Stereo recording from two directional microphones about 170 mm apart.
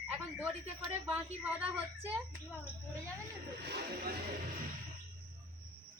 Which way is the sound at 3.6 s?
70° right (ahead or behind).